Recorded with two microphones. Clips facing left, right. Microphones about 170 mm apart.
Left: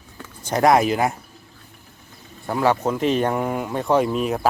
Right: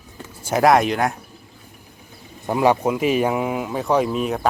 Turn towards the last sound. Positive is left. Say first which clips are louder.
# even
turn(degrees=0)  # may be behind; listen again after turning